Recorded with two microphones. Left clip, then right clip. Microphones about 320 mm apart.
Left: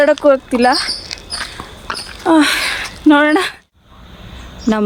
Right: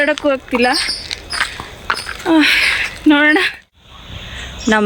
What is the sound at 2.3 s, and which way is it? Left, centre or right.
Speech, centre.